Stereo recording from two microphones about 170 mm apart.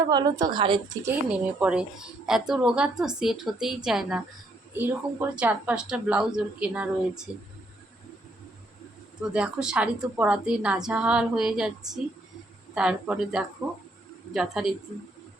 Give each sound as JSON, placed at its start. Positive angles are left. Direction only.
{"t": 0.1, "sound": "a woman's voice", "side_deg": -25}
{"t": 1.0, "sound": "a woman's voice", "side_deg": -10}
{"t": 9.3, "sound": "a woman's voice", "side_deg": -5}